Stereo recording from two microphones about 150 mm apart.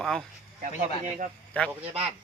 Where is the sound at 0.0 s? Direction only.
Centre (ahead or behind).